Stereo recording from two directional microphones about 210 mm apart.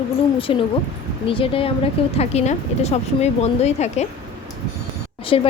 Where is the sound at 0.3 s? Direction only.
25° left (ahead or behind).